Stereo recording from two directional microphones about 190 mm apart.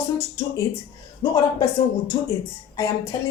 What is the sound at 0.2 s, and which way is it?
Speech, 15° left (ahead or behind).